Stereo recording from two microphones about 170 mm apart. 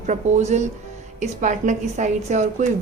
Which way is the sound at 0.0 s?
45° right (ahead or behind).